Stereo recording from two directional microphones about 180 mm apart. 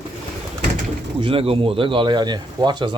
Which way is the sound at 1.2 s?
30° right (ahead or behind).